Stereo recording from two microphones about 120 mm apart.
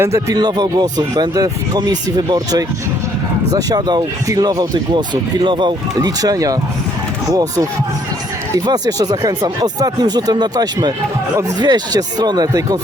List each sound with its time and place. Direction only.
0.0 s speech: 25° right (ahead or behind)